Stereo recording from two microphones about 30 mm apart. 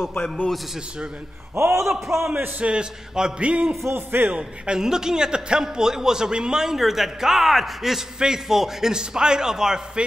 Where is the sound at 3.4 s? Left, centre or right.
Right.